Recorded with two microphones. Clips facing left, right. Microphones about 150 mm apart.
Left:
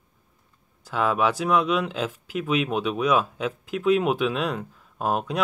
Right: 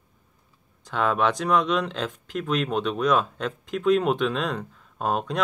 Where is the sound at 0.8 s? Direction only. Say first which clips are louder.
Even; 5° left (ahead or behind).